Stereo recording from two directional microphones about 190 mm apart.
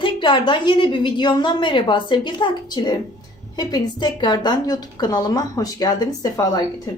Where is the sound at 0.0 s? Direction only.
25° left (ahead or behind).